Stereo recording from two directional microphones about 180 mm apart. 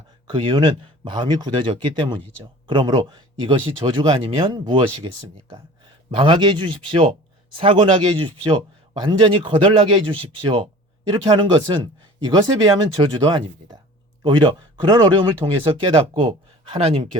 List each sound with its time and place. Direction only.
0.3 s speech: 25° right (ahead or behind)